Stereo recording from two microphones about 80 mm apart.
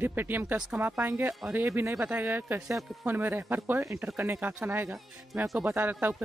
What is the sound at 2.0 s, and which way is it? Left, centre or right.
Speech, right.